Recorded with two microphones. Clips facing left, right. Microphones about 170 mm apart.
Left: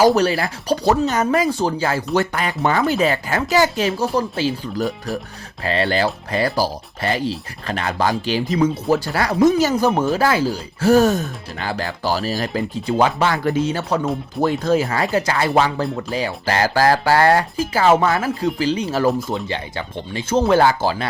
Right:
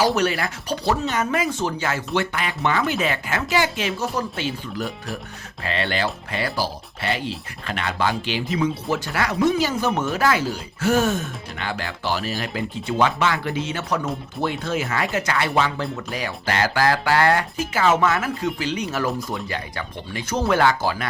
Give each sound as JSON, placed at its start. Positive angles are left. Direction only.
{"t": 0.0, "sound": "speech", "side_deg": 35}